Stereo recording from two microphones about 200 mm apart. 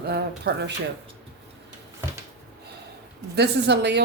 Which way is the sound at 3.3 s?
55° right (ahead or behind).